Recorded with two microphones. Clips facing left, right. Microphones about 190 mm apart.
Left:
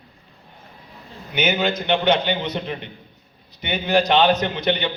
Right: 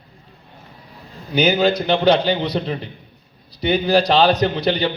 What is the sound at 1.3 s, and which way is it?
A man's voice, 35° right (ahead or behind).